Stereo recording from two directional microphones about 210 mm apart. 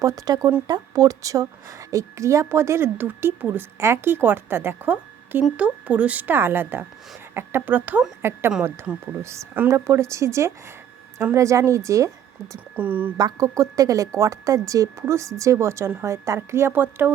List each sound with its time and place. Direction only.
0.0 s speech: 15° right (ahead or behind)